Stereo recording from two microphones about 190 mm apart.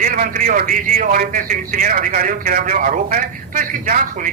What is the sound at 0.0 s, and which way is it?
A man's voice, 45° right (ahead or behind).